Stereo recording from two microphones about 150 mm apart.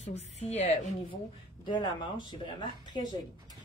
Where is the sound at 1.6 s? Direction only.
30° left (ahead or behind).